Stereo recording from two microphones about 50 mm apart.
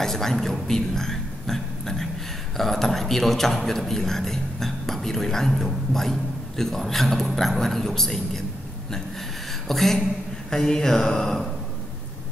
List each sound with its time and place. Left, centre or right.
0.0 s a man's voice: centre
9.7 s a man's voice: centre
10.5 s a sound: centre